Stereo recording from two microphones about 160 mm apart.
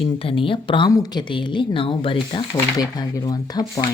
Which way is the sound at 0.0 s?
35° left (ahead or behind).